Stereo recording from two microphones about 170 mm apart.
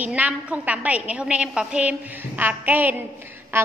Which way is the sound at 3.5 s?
15° right (ahead or behind).